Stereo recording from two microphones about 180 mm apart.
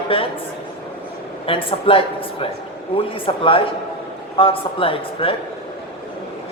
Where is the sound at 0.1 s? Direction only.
30° left (ahead or behind).